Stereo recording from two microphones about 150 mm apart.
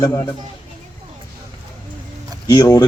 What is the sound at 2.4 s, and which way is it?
Speech, 25° left (ahead or behind).